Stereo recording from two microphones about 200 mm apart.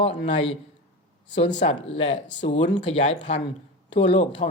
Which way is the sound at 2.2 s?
65° left (ahead or behind).